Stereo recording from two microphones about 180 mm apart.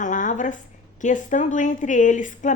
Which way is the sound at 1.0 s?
45° left (ahead or behind).